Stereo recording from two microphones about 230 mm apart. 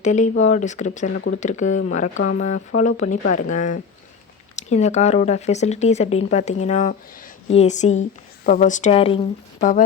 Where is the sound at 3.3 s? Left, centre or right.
Left.